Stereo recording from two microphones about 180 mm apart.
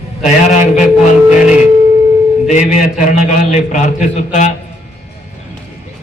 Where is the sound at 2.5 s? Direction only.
40° left (ahead or behind).